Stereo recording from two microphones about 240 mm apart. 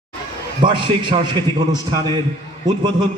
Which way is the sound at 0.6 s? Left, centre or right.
Centre.